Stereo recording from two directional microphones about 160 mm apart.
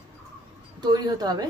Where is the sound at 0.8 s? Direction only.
25° right (ahead or behind).